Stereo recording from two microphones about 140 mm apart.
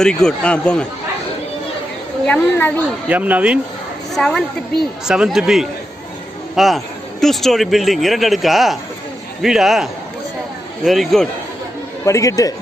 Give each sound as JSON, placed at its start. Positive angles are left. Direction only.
{"t": 0.0, "sound": "speech", "side_deg": 5}
{"t": 2.2, "sound": "speech", "side_deg": 15}
{"t": 3.1, "sound": "speech", "side_deg": -10}
{"t": 4.1, "sound": "speech", "side_deg": 5}
{"t": 12.0, "sound": "speech", "side_deg": 20}